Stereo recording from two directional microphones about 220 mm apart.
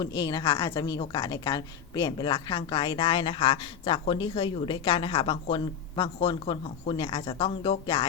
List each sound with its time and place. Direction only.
0.2 s a woman's voice: 20° left (ahead or behind)